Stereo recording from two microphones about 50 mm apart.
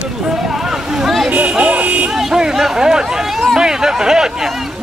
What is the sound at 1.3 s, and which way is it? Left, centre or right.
Buzzer, right.